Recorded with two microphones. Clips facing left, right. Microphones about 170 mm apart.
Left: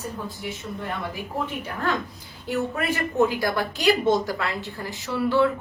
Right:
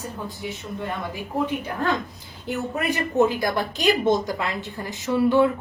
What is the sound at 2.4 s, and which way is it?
A woman's voice, 20° right (ahead or behind).